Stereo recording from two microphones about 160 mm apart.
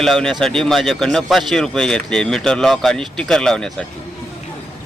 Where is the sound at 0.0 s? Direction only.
Centre (ahead or behind).